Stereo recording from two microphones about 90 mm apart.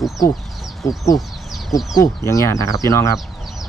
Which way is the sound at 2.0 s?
35° left (ahead or behind).